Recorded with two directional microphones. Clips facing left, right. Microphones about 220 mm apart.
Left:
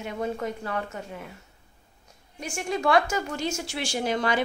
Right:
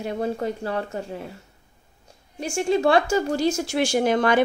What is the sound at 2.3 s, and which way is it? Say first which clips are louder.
Speech: right 8 dB; 30° right (ahead or behind).